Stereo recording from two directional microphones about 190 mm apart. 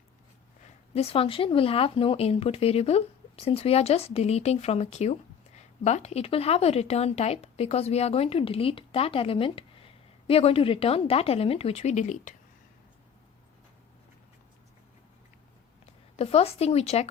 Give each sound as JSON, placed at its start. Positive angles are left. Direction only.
{"t": 0.9, "sound": "speech", "side_deg": 30}
{"t": 16.1, "sound": "speech", "side_deg": 30}